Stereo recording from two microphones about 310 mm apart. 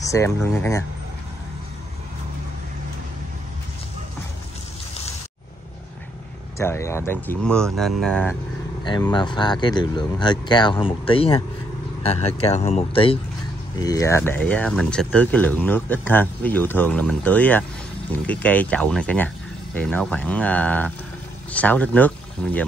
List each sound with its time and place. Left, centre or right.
0.0 s speech: centre
6.6 s speech: centre
8.8 s speech: centre